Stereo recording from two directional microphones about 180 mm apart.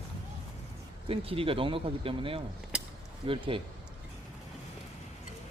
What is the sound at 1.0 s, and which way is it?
Speech, 30° right (ahead or behind).